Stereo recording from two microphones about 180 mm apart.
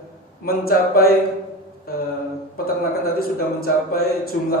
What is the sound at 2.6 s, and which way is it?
A man's voice, 55° left (ahead or behind).